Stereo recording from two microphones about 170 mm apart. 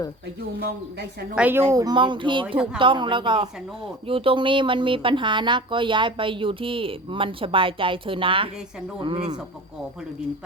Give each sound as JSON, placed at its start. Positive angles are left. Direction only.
{"t": 1.4, "sound": "speech", "side_deg": -10}